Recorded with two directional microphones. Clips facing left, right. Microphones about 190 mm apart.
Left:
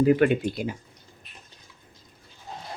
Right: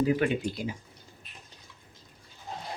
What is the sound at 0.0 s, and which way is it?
Speech, 60° left (ahead or behind).